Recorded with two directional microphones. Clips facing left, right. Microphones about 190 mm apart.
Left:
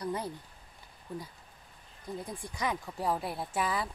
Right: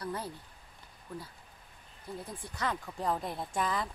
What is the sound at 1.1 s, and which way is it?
Speech, 15° left (ahead or behind).